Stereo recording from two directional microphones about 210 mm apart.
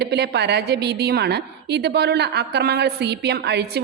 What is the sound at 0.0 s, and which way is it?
A woman's voice, 50° right (ahead or behind).